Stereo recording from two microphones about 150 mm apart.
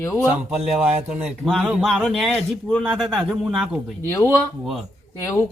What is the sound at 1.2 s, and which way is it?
Speech, centre (ahead or behind).